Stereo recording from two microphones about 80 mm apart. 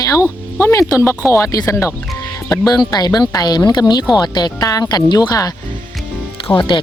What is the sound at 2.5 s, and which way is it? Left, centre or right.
Speech, left.